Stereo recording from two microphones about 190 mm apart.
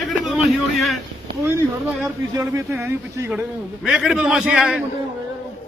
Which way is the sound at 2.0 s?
15° right (ahead or behind).